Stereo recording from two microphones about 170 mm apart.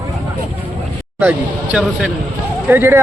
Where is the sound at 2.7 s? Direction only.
15° right (ahead or behind).